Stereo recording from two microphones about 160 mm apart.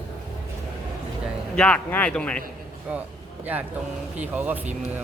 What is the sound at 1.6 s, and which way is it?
Speech, 10° left (ahead or behind).